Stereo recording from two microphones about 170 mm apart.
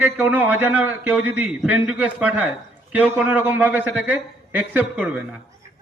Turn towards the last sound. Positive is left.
turn(degrees=-10)  # may be behind; listen again after turning